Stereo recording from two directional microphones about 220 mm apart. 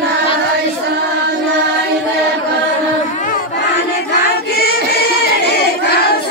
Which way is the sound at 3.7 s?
50° left (ahead or behind).